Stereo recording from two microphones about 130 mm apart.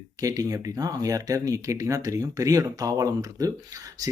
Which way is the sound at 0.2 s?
25° right (ahead or behind).